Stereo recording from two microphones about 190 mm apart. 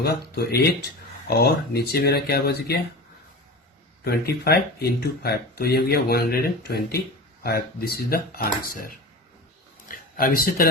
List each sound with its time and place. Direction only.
0.0 s speech: 55° left (ahead or behind)
4.0 s speech: 55° left (ahead or behind)